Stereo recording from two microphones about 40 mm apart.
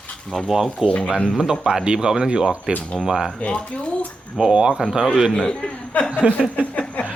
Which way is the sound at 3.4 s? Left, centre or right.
Left.